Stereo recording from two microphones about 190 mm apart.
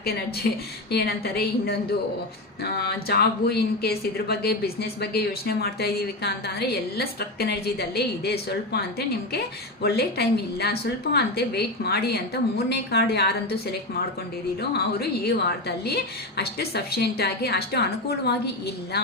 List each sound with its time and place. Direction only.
0.4 s a woman's voice: 55° left (ahead or behind)